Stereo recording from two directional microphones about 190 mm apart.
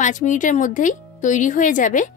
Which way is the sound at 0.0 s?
40° left (ahead or behind).